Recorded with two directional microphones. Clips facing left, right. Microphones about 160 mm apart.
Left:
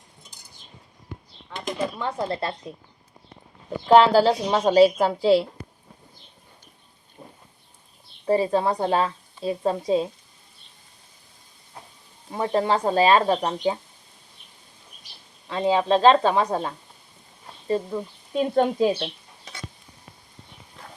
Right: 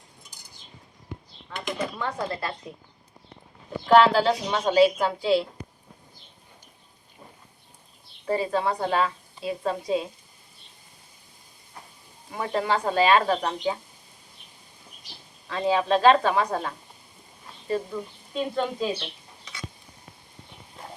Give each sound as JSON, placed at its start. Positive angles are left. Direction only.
{"t": 1.5, "sound": "a sound", "side_deg": 10}
{"t": 2.0, "sound": "speech", "side_deg": 25}
{"t": 3.8, "sound": "a woman's voice", "side_deg": 35}
{"t": 8.3, "sound": "a woman's voice", "side_deg": 30}
{"t": 12.3, "sound": "speech", "side_deg": 30}
{"t": 15.4, "sound": "speech", "side_deg": 20}
{"t": 17.9, "sound": "speech", "side_deg": 45}